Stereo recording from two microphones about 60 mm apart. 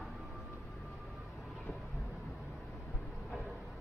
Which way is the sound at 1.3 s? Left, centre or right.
Centre.